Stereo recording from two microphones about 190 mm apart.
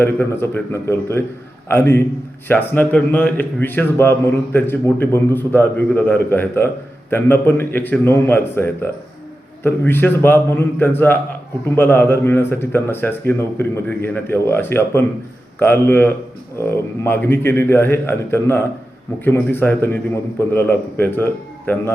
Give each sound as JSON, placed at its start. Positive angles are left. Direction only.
{"t": 0.0, "sound": "a man's voice", "side_deg": 10}